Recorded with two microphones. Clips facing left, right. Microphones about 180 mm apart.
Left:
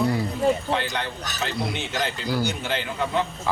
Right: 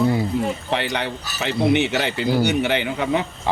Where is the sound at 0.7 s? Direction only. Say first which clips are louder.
Right 3 dB; 75° right (ahead or behind).